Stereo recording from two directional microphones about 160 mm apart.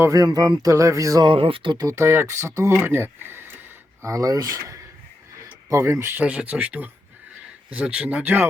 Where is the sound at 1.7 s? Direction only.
20° right (ahead or behind).